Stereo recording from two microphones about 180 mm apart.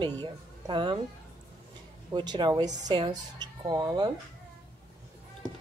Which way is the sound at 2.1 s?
25° right (ahead or behind).